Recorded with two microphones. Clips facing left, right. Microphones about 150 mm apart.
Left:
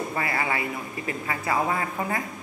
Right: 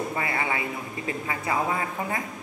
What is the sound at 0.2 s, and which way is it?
A man's voice, 25° right (ahead or behind).